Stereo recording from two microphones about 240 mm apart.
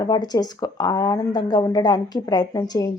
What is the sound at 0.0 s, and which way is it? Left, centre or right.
Speech, centre.